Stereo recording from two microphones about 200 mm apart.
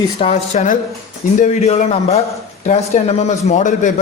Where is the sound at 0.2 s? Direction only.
30° left (ahead or behind).